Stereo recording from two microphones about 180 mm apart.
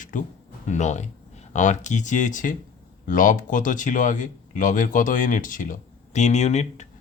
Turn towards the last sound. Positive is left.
turn(degrees=40)  # may be behind; listen again after turning